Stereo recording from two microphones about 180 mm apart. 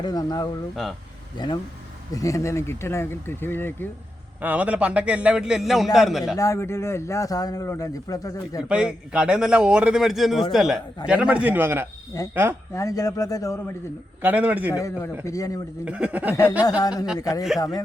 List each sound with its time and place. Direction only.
0.0 s a man's voice: 20° left (ahead or behind)
4.4 s a man's voice: 10° right (ahead or behind)
6.3 s a man's voice: 15° left (ahead or behind)
8.7 s a man's voice: 5° right (ahead or behind)
12.7 s a man's voice: 20° left (ahead or behind)
14.2 s a man's voice: 10° right (ahead or behind)
14.7 s a man's voice: 15° left (ahead or behind)
15.8 s a man's voice: 5° right (ahead or behind)
16.3 s a man's voice: 20° left (ahead or behind)